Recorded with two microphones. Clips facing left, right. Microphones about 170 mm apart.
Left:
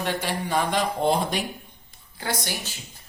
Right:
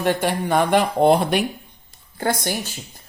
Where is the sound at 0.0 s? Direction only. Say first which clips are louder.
Right 7 dB; 55° right (ahead or behind).